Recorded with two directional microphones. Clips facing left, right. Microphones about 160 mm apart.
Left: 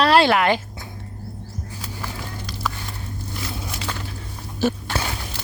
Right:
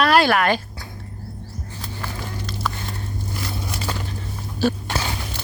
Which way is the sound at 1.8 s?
5° left (ahead or behind).